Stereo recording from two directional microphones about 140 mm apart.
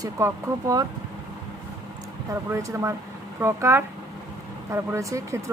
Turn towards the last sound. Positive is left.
turn(degrees=-20)  # may be behind; listen again after turning